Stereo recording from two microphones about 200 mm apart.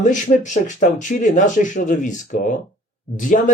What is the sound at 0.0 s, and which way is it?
Speech, 40° left (ahead or behind).